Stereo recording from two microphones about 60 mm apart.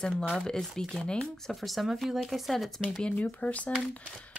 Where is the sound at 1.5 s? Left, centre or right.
Centre.